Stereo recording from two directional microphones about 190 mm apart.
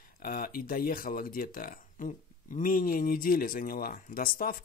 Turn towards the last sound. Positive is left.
turn(degrees=50)  # may be behind; listen again after turning